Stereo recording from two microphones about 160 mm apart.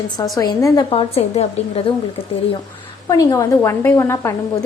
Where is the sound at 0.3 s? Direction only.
25° left (ahead or behind); by 2.2 s 40° left (ahead or behind).